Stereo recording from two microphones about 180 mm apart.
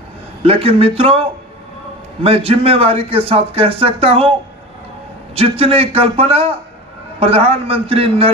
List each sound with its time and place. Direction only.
0.4 s speech: 35° right (ahead or behind)
2.2 s speech: 35° right (ahead or behind)
5.3 s speech: 35° right (ahead or behind)